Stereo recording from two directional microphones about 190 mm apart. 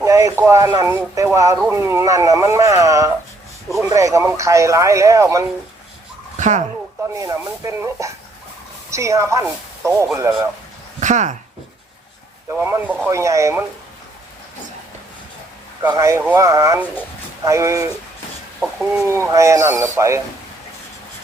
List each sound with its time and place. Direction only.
0.0 s speech: 15° right (ahead or behind)
6.3 s speech: 40° right (ahead or behind)
7.1 s speech: 15° right (ahead or behind)
11.0 s speech: 40° right (ahead or behind)
12.5 s speech: 10° right (ahead or behind)
15.9 s speech: 15° right (ahead or behind)
18.6 s speech: centre (ahead or behind)
19.0 s speech: 15° right (ahead or behind)